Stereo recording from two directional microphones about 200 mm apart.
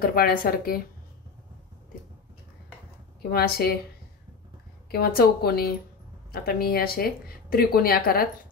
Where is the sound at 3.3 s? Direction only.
50° left (ahead or behind).